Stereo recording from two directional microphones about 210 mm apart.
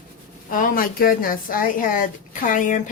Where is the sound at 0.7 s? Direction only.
45° left (ahead or behind).